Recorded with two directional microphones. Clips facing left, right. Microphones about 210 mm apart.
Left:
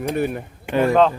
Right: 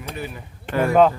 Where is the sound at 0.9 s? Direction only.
10° right (ahead or behind).